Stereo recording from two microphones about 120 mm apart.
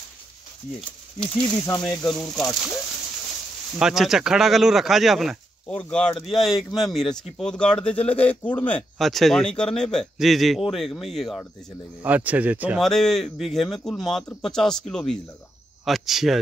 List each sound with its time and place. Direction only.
0.7 s speech: 5° left (ahead or behind)
2.4 s speech: 25° left (ahead or behind)
3.8 s speech: 5° right (ahead or behind)
5.7 s speech: 10° left (ahead or behind)
8.9 s speech: centre (ahead or behind)
12.0 s speech: 15° right (ahead or behind)
12.7 s speech: 5° left (ahead or behind)